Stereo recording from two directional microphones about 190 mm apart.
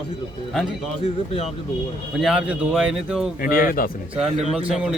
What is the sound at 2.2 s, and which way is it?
Speech, 5° right (ahead or behind).